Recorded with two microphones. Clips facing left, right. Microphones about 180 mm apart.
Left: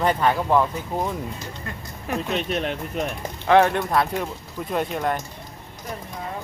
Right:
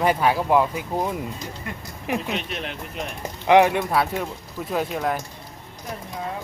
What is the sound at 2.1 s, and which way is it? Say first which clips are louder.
Speech: right 1 dB; 15° right (ahead or behind).